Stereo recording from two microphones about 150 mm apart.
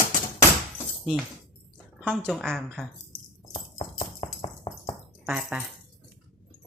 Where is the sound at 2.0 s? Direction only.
5° left (ahead or behind).